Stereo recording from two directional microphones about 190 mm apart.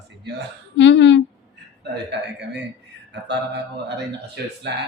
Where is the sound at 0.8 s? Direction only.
70° left (ahead or behind).